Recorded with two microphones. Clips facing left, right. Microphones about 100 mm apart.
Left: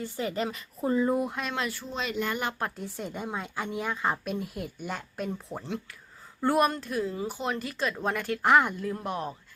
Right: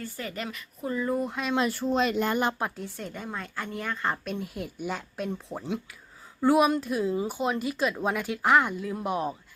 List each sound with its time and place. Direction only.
0.0 s a woman's voice: 25° left (ahead or behind)
1.3 s speech: centre (ahead or behind)
2.0 s speech: 45° right (ahead or behind)
2.6 s speech: 5° right (ahead or behind)
2.8 s a woman's voice: 15° left (ahead or behind); by 9.3 s 10° right (ahead or behind)